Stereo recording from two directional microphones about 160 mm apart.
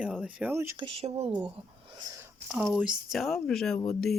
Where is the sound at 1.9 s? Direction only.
25° right (ahead or behind).